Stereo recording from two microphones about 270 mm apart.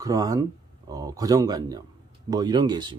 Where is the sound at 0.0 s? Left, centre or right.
Centre.